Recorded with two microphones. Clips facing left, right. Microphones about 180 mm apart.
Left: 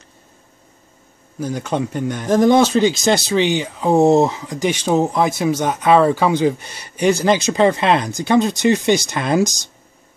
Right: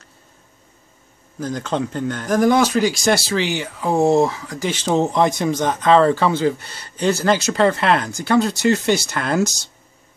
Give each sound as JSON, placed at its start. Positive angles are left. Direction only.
{"t": 1.4, "sound": "speech", "side_deg": 10}